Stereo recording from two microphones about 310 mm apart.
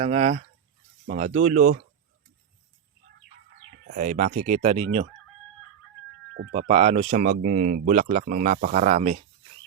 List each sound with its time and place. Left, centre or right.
0.0 s speech: right
3.9 s speech: right
6.3 s speech: right
6.6 s speech: centre